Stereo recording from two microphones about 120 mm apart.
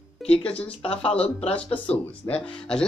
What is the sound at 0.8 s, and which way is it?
Speech, 55° left (ahead or behind).